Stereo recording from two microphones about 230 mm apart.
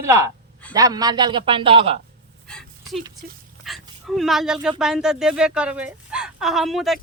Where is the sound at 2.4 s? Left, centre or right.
Centre.